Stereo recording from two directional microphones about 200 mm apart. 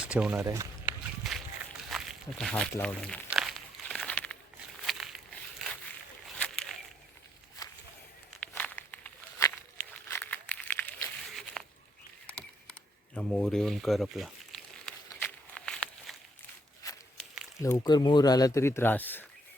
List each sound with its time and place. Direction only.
0.0 s speech: 5° right (ahead or behind)
1.2 s a sound: centre (ahead or behind)
1.9 s walk: centre (ahead or behind)
2.7 s crumpling: 5° left (ahead or behind)
4.9 s a sound: centre (ahead or behind)
8.4 s a sound: 5° left (ahead or behind)
13.1 s crumpling: 5° left (ahead or behind)
16.8 s walk: 15° left (ahead or behind)
17.6 s speech: 20° left (ahead or behind)